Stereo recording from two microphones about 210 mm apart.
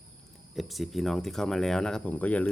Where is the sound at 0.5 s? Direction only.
Centre (ahead or behind).